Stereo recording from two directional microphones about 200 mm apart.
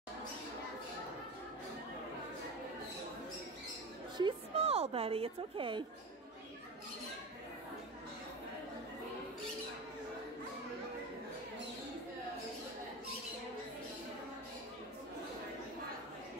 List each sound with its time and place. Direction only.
4.2 s a woman's voice: 30° right (ahead or behind)